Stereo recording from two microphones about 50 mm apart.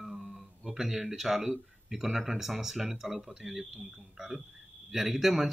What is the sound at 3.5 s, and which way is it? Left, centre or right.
Speech, right.